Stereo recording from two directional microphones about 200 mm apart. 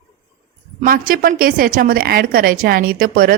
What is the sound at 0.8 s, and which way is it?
A woman's voice, 45° right (ahead or behind).